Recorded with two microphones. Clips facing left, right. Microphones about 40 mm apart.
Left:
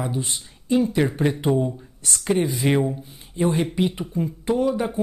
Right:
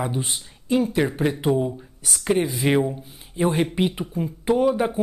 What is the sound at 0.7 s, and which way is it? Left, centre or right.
Speech, centre.